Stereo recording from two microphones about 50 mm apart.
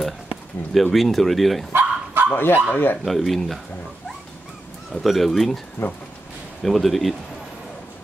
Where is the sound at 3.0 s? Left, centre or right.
Centre.